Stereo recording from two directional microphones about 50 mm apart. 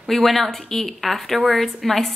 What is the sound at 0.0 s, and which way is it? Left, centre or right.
Speech, centre.